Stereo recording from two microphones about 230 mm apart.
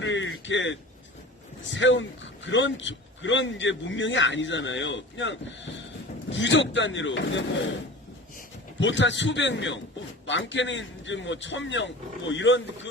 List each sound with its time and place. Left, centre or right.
0.0 s a sound: left
1.7 s a man's voice: left
8.8 s a man's voice: left